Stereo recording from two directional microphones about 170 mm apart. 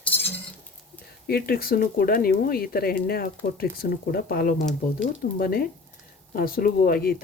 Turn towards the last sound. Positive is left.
turn(degrees=60)  # may be behind; listen again after turning